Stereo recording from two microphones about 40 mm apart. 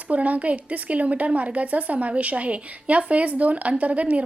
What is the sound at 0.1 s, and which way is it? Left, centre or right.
Speech, right.